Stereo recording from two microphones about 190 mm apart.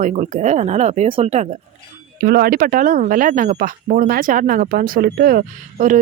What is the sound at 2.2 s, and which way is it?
Speech, 50° right (ahead or behind).